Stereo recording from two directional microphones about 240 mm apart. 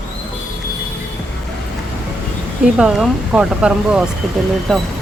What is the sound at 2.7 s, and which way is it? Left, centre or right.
Speech, centre.